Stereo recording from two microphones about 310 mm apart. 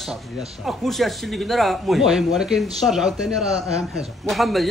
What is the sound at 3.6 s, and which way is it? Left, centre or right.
Speech, centre.